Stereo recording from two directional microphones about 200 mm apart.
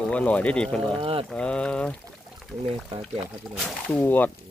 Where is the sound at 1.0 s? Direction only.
30° right (ahead or behind).